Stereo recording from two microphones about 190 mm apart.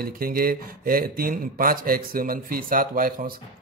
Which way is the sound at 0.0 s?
50° right (ahead or behind).